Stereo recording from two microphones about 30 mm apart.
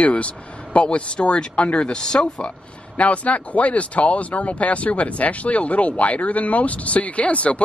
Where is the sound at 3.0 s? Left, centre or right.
Left.